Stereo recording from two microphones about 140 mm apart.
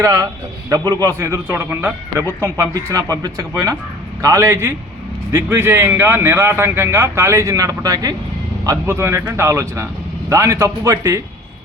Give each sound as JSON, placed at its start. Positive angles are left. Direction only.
{"t": 0.0, "sound": "a man's voice", "side_deg": -25}